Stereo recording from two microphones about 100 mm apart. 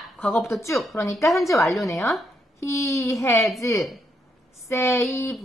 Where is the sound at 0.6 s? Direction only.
30° left (ahead or behind).